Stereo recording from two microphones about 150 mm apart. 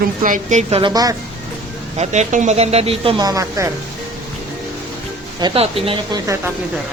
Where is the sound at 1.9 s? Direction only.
50° right (ahead or behind).